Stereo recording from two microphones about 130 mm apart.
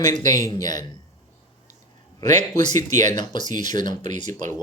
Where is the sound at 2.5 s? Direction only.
70° right (ahead or behind).